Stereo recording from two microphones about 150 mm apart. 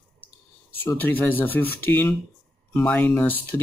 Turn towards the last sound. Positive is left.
turn(degrees=10)  # may be behind; listen again after turning